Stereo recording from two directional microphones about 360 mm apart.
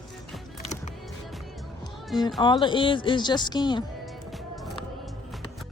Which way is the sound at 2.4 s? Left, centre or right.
Centre.